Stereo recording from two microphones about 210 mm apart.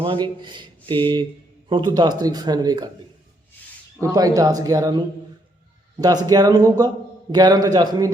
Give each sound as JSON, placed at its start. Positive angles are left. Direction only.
{"t": 0.0, "sound": "speech", "side_deg": -25}
{"t": 4.0, "sound": "speech", "side_deg": -15}